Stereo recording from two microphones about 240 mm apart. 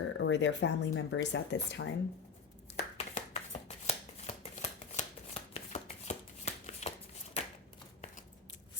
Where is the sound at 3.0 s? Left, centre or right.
Left.